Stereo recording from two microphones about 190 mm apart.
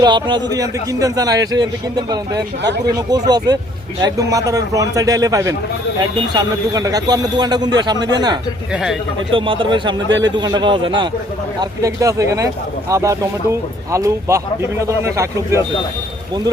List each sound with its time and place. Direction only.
0.0 s a man's voice: 25° right (ahead or behind)
2.6 s speech: 65° right (ahead or behind)
2.9 s a man's voice: 20° right (ahead or behind)
8.7 s speech: 5° right (ahead or behind)
9.3 s a man's voice: 25° right (ahead or behind)